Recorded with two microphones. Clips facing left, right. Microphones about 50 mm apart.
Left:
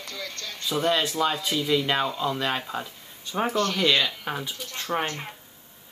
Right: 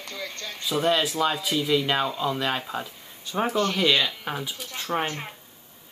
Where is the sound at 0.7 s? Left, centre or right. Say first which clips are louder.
Right 1 dB; centre.